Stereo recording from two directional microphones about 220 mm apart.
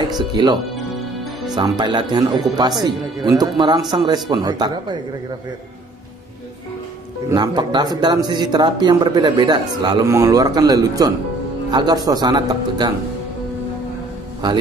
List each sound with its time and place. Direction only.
0.1 s speech: 20° right (ahead or behind)
7.2 s speech: 20° right (ahead or behind)
14.4 s speech: 20° right (ahead or behind)